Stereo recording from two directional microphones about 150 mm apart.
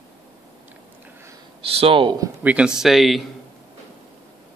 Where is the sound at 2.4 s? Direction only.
10° right (ahead or behind).